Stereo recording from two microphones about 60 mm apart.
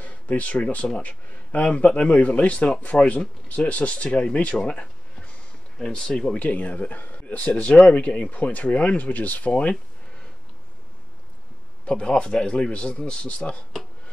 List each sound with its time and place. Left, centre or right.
0.0 s a man's voice: left
6.4 s speech: left
11.8 s a man's voice: centre